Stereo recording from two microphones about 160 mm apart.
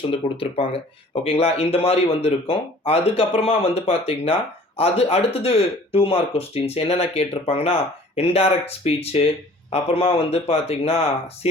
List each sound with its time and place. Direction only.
0.1 s speech: 35° left (ahead or behind)